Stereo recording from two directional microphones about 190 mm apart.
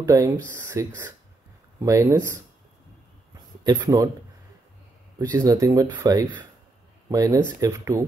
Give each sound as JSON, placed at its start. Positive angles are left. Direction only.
{"t": 0.0, "sound": "speech", "side_deg": -15}
{"t": 3.6, "sound": "speech", "side_deg": -20}
{"t": 5.2, "sound": "speech", "side_deg": -20}